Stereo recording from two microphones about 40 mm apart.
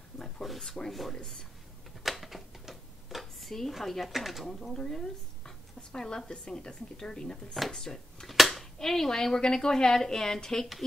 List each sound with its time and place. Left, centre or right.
0.2 s a sound: centre
0.8 s speech: centre
1.1 s speech: centre
2.0 s a sound: centre
4.7 s speech: centre
7.5 s speech: centre
8.3 s cap gun: centre
8.7 s speech: centre